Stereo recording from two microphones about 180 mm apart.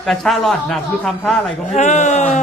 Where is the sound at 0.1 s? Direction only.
Centre (ahead or behind).